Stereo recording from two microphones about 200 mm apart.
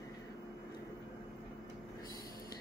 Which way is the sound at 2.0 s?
20° left (ahead or behind).